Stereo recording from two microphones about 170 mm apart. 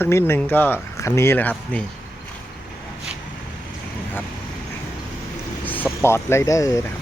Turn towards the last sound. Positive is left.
turn(degrees=20)  # may be behind; listen again after turning